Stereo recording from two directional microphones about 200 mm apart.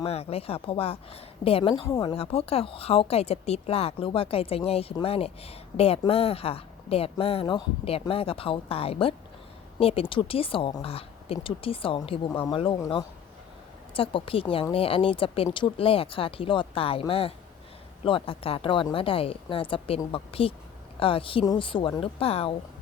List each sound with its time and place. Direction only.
0.0 s speech: 30° left (ahead or behind)